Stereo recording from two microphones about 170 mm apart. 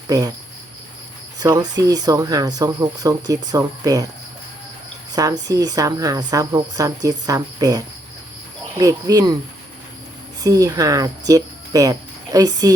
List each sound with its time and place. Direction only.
0.1 s a woman's voice: 20° right (ahead or behind)
1.4 s a woman's voice: 20° right (ahead or behind)
5.1 s a woman's voice: 20° right (ahead or behind)
10.4 s speech: 20° right (ahead or behind)